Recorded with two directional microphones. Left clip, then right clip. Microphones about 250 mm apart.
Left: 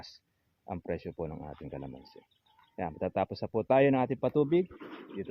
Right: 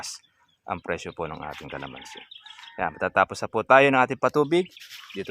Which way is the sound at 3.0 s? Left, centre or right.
Centre.